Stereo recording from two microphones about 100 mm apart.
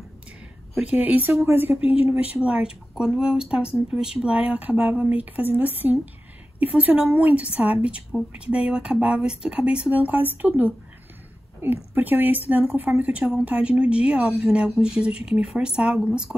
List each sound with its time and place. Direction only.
0.7 s speech: 15° right (ahead or behind)
2.4 s speech: 10° right (ahead or behind)
6.8 s speech: 15° right (ahead or behind)